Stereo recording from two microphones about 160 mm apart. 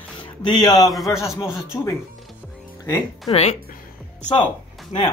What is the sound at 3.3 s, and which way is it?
Speech, 30° left (ahead or behind).